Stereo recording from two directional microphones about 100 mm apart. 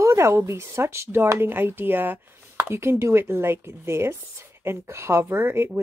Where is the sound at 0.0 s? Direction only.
30° right (ahead or behind).